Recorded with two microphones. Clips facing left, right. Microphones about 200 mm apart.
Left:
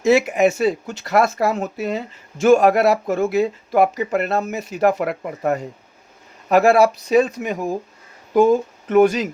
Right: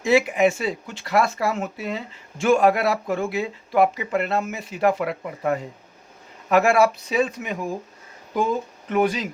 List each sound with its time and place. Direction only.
0.0 s speech: 45° left (ahead or behind)